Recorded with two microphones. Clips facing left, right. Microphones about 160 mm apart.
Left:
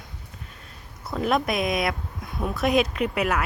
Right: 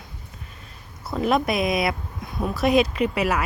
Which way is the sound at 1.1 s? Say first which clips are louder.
Right 2 dB; centre (ahead or behind).